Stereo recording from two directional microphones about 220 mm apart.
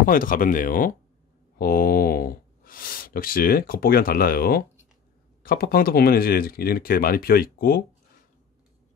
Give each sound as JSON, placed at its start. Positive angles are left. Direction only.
{"t": 0.0, "sound": "speech", "side_deg": 40}